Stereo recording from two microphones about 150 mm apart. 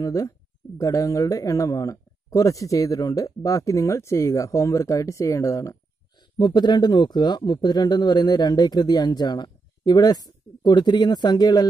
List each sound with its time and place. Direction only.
0.0 s speech: 20° left (ahead or behind)